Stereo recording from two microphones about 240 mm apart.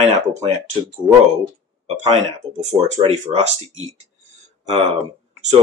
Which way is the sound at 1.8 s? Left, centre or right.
Right.